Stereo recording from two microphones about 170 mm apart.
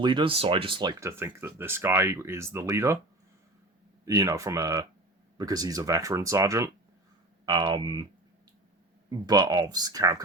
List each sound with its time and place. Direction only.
0.0 s speech: 30° right (ahead or behind)
4.0 s speech: 20° right (ahead or behind)
9.0 s speech: 25° right (ahead or behind)